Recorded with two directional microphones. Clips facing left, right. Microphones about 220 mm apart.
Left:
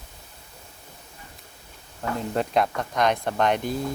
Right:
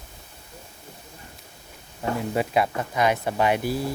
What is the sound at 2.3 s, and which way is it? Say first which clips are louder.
Speech: left 1 dB; 5° right (ahead or behind).